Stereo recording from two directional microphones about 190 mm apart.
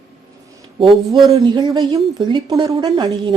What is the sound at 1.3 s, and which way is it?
Speech, 20° right (ahead or behind).